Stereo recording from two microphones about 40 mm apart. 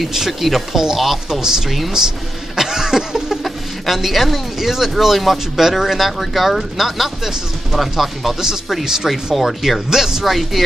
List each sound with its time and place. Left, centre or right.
0.1 s speech: centre
2.0 s a sound: centre
3.4 s speech: centre
9.3 s speech: centre
9.6 s speech: centre